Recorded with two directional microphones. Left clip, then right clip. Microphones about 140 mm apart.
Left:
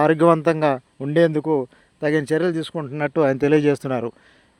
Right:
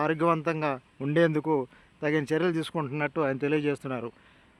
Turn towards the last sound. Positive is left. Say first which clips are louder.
# left 10 dB
turn(degrees=50)  # may be behind; listen again after turning